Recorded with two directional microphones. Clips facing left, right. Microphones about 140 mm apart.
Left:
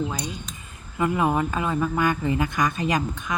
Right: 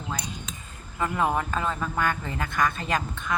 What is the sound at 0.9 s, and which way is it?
Speech, 10° left (ahead or behind).